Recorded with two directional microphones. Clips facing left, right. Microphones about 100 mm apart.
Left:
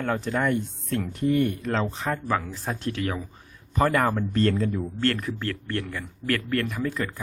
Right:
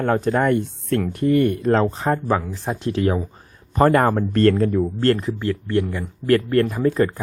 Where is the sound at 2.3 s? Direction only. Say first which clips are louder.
Right 5 dB; 20° right (ahead or behind).